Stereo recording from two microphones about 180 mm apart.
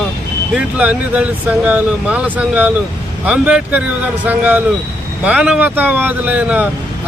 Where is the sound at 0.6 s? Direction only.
5° right (ahead or behind).